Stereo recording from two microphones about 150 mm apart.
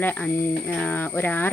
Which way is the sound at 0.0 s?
10° left (ahead or behind).